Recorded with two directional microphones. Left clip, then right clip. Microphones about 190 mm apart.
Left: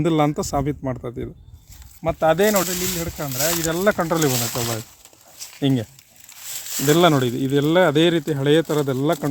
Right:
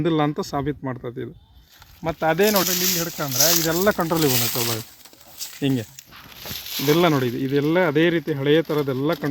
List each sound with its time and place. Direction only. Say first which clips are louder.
0.0 s speech: left 2 dB; 35° left (ahead or behind)
2.6 s speech: right 3 dB; 5° left (ahead or behind)
5.5 s speech: left 2 dB; 35° left (ahead or behind)
6.8 s speech: left 3 dB; 30° left (ahead or behind)